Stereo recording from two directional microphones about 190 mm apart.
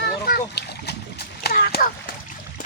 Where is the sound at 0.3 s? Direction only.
55° left (ahead or behind).